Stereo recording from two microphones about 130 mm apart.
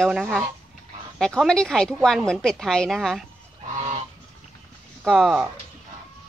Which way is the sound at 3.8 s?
55° right (ahead or behind).